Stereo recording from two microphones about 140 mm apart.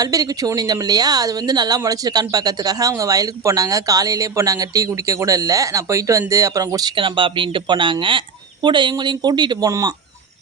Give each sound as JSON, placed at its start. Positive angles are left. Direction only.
{"t": 0.0, "sound": "speech", "side_deg": -25}